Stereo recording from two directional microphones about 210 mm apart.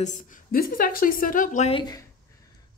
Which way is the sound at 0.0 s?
35° left (ahead or behind).